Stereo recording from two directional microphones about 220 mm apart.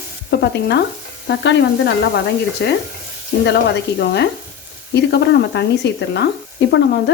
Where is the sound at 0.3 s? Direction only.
50° left (ahead or behind).